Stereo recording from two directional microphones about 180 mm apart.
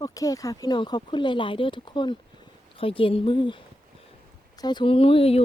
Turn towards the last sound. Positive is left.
turn(degrees=30)  # may be behind; listen again after turning